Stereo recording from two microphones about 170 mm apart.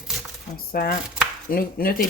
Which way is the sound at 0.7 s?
60° left (ahead or behind).